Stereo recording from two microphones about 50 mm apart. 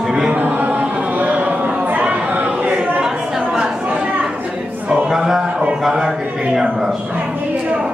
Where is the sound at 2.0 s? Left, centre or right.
Right.